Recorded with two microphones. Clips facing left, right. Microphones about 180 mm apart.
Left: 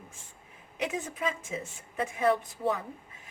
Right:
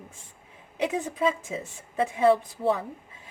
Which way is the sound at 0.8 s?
30° right (ahead or behind).